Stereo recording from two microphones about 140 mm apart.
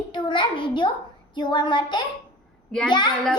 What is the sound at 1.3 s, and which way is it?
Speech, 30° left (ahead or behind).